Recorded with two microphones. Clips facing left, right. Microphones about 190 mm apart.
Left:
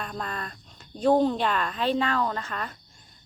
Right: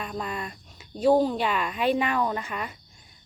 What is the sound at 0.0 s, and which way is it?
A woman's voice, 5° right (ahead or behind).